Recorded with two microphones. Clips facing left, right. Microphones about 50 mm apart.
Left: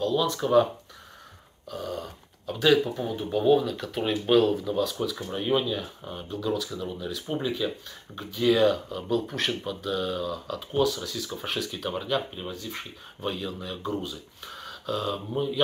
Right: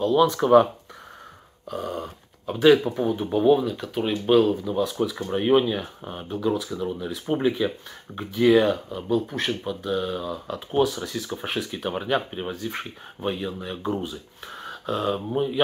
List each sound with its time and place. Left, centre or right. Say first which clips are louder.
0.0 s speech: right 6 dB; right
0.3 s speech: right 3 dB; right
1.7 s speech: right 4 dB; right; by 4.8 s centre
4.8 s speech: right 4 dB; right
13.2 s speech: right 4 dB; right